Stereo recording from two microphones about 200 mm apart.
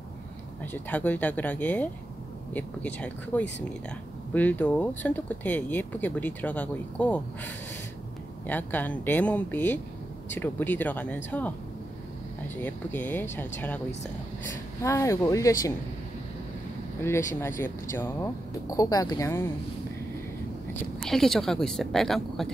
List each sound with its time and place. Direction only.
0.7 s speech: 10° left (ahead or behind)
8.5 s speech: 10° left (ahead or behind)
12.6 s speech: 10° left (ahead or behind)
14.8 s speech: 15° left (ahead or behind)
17.0 s speech: 15° left (ahead or behind)
21.0 s a woman's voice: centre (ahead or behind)